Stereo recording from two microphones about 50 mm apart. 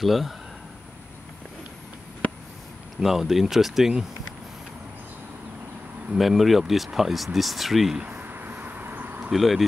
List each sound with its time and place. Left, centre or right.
0.0 s speech: centre
3.0 s speech: centre
6.1 s speech: centre
8.0 s a sound: right
9.3 s speech: centre